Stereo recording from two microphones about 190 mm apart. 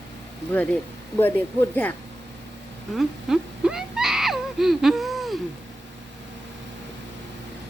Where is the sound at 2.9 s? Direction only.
5° right (ahead or behind).